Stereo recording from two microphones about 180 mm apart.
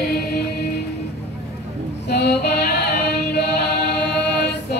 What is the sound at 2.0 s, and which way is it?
Female singing, 65° left (ahead or behind).